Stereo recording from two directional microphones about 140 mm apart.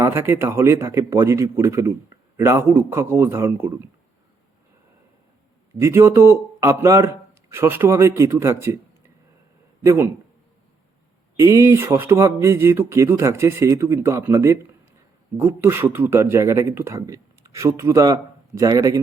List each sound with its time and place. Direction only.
0.0 s speech: 20° right (ahead or behind)
5.8 s speech: 20° right (ahead or behind)
9.8 s speech: 20° right (ahead or behind)
11.3 s speech: 20° right (ahead or behind)